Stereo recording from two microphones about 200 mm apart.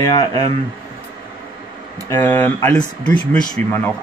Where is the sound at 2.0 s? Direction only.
10° left (ahead or behind).